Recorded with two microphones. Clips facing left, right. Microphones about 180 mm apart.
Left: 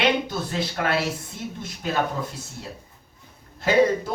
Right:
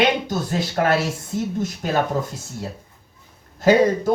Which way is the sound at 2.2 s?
40° right (ahead or behind).